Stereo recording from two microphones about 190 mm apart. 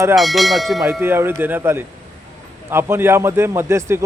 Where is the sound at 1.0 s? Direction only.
10° right (ahead or behind).